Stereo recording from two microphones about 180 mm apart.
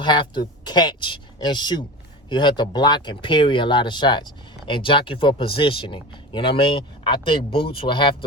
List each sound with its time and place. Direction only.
0.0 s speech: 25° left (ahead or behind)